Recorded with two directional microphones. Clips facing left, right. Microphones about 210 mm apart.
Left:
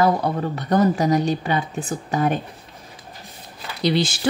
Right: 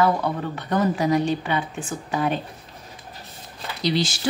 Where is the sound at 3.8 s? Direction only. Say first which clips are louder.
Left 3 dB; 55° left (ahead or behind).